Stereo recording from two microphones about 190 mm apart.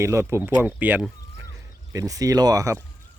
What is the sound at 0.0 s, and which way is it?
Speech, 15° right (ahead or behind).